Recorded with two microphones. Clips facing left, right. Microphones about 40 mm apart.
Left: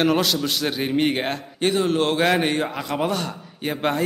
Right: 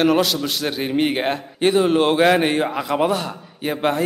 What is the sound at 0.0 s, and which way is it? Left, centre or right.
A man's voice, centre.